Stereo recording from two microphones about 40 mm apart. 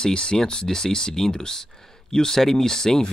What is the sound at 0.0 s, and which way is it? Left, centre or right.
Speech, left.